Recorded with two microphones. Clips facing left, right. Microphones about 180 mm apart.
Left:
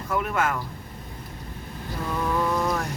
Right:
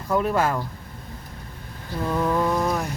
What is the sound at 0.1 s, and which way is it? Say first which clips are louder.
Speech: right 4 dB; 30° right (ahead or behind).